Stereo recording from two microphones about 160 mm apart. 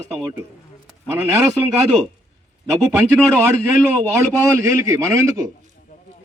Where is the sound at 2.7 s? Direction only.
15° right (ahead or behind).